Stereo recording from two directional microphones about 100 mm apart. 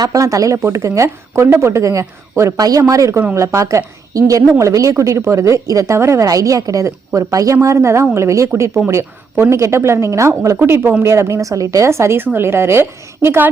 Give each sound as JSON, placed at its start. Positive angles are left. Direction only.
{"t": 0.0, "sound": "a woman's voice", "side_deg": -35}